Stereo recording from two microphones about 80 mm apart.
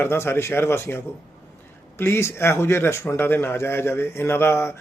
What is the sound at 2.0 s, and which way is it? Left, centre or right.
Speech, left.